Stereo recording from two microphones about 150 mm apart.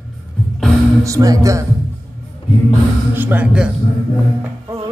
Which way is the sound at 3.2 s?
10° right (ahead or behind).